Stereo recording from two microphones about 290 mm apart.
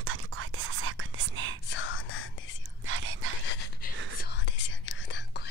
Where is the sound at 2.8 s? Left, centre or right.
Right.